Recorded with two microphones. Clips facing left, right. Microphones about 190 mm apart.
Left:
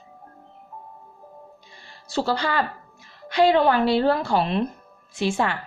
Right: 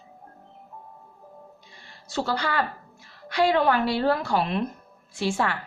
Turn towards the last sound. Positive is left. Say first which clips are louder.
# left 2 dB
turn(degrees=20)  # may be behind; listen again after turning